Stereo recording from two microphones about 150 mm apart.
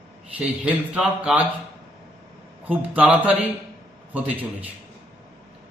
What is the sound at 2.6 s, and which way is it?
Speech, 10° right (ahead or behind).